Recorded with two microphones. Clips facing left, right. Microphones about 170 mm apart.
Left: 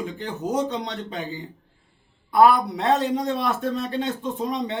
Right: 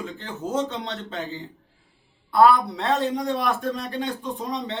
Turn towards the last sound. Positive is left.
turn(degrees=20)  # may be behind; listen again after turning